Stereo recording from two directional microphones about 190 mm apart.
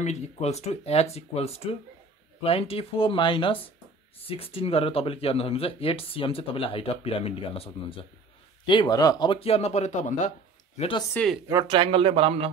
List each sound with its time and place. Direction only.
0.0 s speech: 35° left (ahead or behind)
10.8 s speech: 25° left (ahead or behind)
11.1 s speech: centre (ahead or behind)
11.4 s speech: 20° right (ahead or behind)